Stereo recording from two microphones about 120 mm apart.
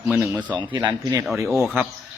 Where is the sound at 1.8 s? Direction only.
15° right (ahead or behind).